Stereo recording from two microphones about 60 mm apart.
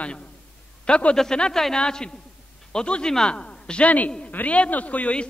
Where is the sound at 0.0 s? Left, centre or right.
Centre.